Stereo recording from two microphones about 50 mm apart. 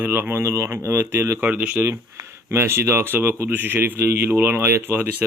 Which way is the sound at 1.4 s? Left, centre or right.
Right.